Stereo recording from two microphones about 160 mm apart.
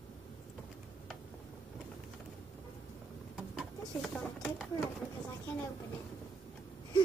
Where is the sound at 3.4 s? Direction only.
Centre (ahead or behind).